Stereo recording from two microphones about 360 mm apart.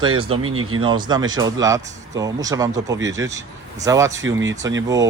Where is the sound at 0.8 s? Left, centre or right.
Centre.